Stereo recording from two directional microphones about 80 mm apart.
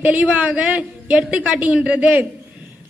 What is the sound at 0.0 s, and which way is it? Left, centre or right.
A woman's voice, centre.